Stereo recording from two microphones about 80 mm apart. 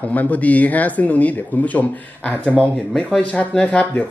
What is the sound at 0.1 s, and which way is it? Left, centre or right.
Speech, centre.